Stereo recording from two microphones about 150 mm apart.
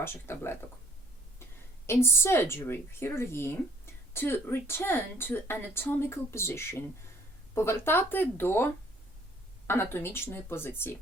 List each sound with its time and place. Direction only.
0.0 s speech: 15° left (ahead or behind)
1.9 s speech: 15° left (ahead or behind)